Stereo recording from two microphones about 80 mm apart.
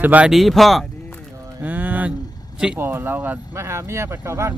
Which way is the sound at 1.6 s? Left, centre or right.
Right.